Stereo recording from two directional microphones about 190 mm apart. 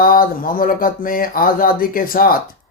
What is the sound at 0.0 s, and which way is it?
Speech, 50° left (ahead or behind).